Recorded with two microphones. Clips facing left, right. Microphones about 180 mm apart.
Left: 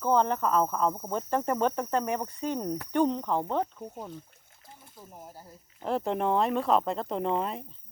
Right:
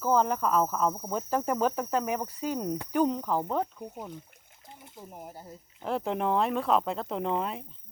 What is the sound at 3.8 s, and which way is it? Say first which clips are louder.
Speech: even; 15° right (ahead or behind).